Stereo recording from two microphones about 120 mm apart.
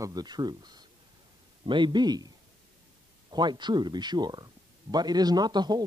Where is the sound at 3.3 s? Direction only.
40° right (ahead or behind).